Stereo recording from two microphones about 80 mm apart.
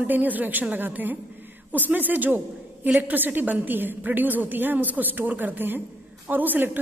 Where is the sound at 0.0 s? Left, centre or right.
Right.